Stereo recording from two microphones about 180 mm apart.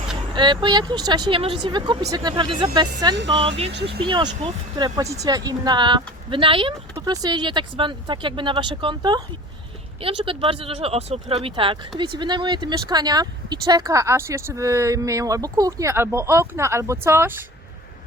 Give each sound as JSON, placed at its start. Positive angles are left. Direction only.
{"t": 0.3, "sound": "speech", "side_deg": -25}